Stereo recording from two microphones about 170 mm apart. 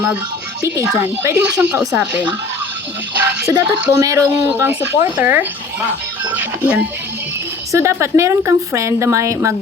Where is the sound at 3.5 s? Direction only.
20° right (ahead or behind).